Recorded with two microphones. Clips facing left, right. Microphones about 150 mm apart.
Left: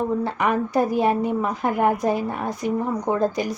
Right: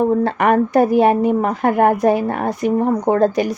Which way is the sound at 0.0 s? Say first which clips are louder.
Right 7 dB; 60° right (ahead or behind).